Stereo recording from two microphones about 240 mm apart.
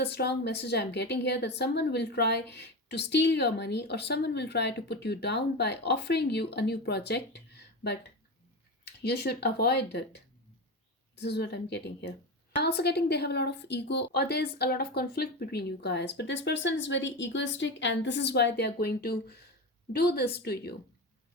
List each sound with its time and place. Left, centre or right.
0.0 s a woman's voice: left
11.2 s a woman's voice: left